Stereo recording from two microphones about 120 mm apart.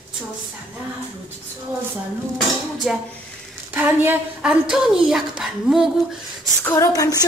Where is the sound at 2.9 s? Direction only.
5° right (ahead or behind).